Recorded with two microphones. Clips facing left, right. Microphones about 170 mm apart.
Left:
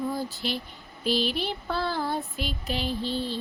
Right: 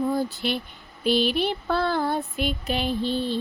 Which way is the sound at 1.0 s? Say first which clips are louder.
Right 5 dB; 60° right (ahead or behind).